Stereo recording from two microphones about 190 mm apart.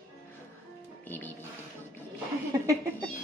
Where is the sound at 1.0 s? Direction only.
10° left (ahead or behind).